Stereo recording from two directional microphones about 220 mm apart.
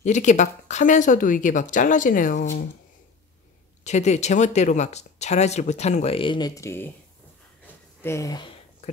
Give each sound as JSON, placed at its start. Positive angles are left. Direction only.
{"t": 0.0, "sound": "speech", "side_deg": 35}
{"t": 3.8, "sound": "speech", "side_deg": 30}
{"t": 8.0, "sound": "speech", "side_deg": 15}